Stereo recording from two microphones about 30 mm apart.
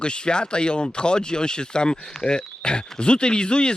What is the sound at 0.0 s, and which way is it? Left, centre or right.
Speech, left.